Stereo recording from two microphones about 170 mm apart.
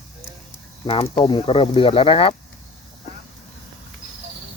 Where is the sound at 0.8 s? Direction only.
30° left (ahead or behind).